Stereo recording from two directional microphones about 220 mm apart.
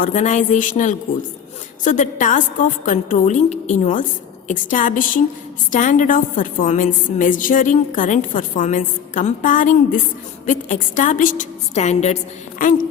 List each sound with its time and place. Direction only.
0.0 s a woman's voice: 35° left (ahead or behind)